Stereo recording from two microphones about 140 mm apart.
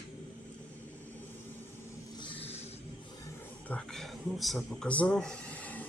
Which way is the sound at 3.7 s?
5° left (ahead or behind).